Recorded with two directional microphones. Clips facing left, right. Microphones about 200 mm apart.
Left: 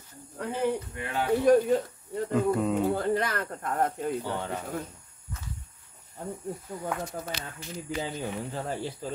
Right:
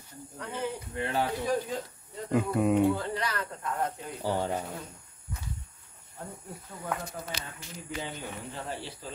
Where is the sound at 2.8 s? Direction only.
50° left (ahead or behind).